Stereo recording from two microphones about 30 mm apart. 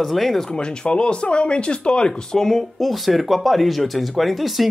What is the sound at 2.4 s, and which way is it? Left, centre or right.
Speech, centre.